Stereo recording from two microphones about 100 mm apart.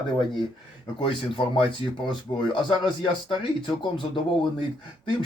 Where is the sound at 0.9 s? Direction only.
55° left (ahead or behind).